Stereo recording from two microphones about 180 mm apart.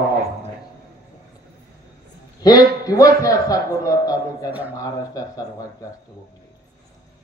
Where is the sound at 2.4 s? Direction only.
20° left (ahead or behind).